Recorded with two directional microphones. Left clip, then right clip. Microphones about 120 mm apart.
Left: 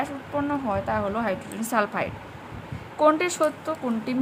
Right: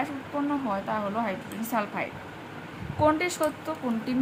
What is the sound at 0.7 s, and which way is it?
A woman's voice, 50° left (ahead or behind).